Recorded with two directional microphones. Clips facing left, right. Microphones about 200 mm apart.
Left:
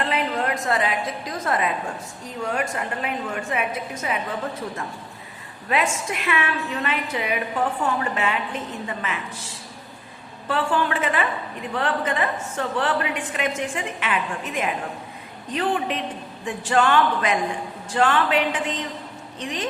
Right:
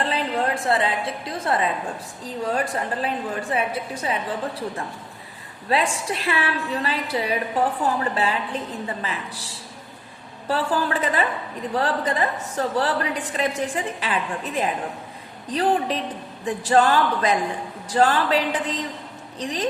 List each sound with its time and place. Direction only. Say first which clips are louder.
0.0 s a sound: right 1 dB; 30° right (ahead or behind)
2.2 s a woman's voice: right 2 dB; 35° right (ahead or behind)
5.6 s a woman's voice: right 1 dB; 30° right (ahead or behind)
10.5 s a woman's voice: even; 35° right (ahead or behind)